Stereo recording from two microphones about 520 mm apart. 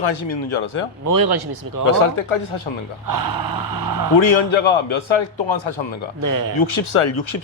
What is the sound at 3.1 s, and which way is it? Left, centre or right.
Speech, right.